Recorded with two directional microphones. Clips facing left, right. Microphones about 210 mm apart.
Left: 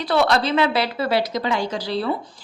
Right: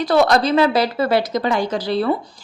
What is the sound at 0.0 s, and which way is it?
A woman's voice, 40° right (ahead or behind).